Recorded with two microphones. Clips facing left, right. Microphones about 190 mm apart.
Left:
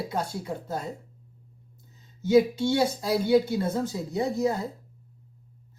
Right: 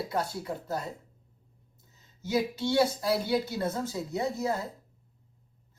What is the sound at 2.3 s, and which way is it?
Speech, 25° left (ahead or behind).